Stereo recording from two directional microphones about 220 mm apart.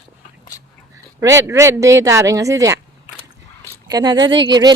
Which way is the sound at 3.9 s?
20° right (ahead or behind).